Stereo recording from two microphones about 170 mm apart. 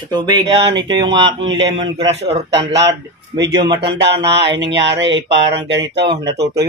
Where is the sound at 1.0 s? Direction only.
90° right.